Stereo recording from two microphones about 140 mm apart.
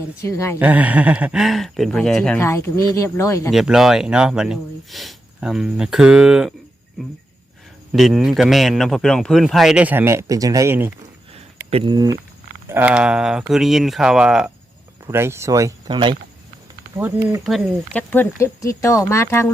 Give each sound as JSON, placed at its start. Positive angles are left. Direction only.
{"t": 0.2, "sound": "speech", "side_deg": 20}
{"t": 0.6, "sound": "speech", "side_deg": -10}
{"t": 2.4, "sound": "speech", "side_deg": 20}
{"t": 3.5, "sound": "speech", "side_deg": 0}
{"t": 7.9, "sound": "speech", "side_deg": 0}
{"t": 11.7, "sound": "speech", "side_deg": -35}
{"t": 12.6, "sound": "speech", "side_deg": -15}
{"t": 15.0, "sound": "speech", "side_deg": -20}
{"t": 15.9, "sound": "speech", "side_deg": -35}
{"t": 17.9, "sound": "speech", "side_deg": 15}